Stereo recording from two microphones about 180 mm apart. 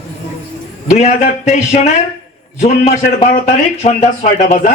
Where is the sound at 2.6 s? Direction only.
35° left (ahead or behind).